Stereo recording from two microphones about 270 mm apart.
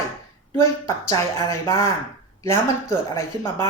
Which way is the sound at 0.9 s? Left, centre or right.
Centre.